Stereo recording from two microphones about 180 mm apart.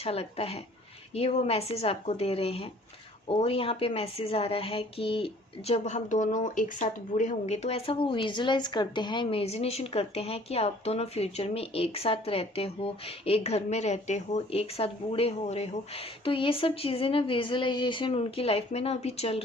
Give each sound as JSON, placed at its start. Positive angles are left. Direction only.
{"t": 0.0, "sound": "a woman's voice", "side_deg": 35}